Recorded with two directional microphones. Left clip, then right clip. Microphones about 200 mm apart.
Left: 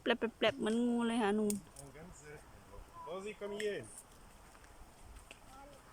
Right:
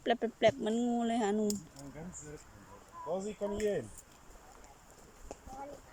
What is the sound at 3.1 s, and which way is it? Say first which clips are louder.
Speech: right 6 dB; 35° right (ahead or behind).